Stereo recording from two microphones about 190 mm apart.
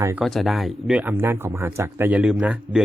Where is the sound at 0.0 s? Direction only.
10° right (ahead or behind).